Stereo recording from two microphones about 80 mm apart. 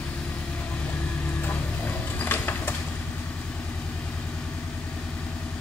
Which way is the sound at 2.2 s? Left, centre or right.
Left.